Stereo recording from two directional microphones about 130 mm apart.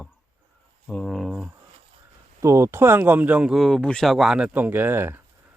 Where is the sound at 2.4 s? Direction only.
25° right (ahead or behind).